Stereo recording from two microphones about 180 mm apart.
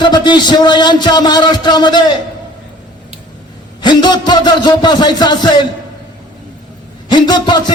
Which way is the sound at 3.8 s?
25° left (ahead or behind).